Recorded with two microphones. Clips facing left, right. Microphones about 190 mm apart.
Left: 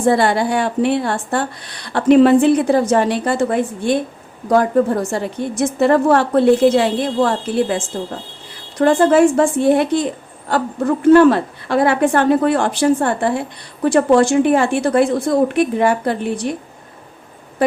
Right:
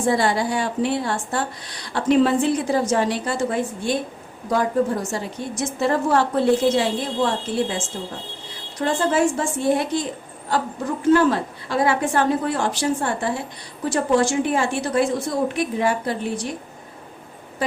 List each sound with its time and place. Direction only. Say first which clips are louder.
0.0 s a woman's voice: left 5 dB; 60° left (ahead or behind)
17.6 s a woman's voice: left 8 dB; 55° left (ahead or behind)